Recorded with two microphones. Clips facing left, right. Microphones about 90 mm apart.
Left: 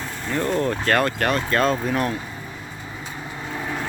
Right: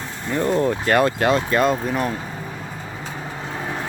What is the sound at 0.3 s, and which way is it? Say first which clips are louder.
Speech: right 3 dB; 15° right (ahead or behind).